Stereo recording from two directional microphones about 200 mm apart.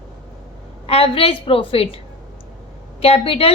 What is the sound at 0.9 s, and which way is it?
A woman's voice, 30° left (ahead or behind).